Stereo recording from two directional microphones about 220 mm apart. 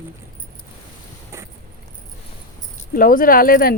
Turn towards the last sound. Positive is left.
turn(degrees=40)  # may be behind; listen again after turning